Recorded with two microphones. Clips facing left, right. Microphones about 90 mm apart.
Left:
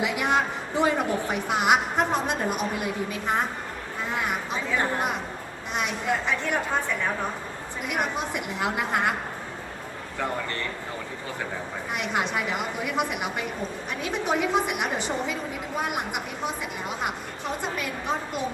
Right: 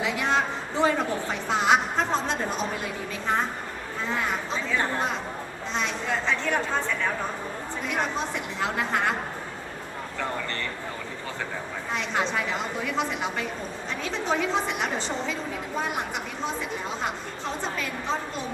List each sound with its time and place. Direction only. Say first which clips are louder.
0.0 s a woman's voice: left 1 dB; 15° left (ahead or behind)
11.9 s a woman's voice: even; 15° left (ahead or behind)
17.0 s a woman's voice: even; 15° left (ahead or behind)